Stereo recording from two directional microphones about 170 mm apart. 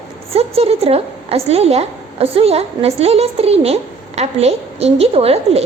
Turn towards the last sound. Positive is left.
turn(degrees=-35)  # may be behind; listen again after turning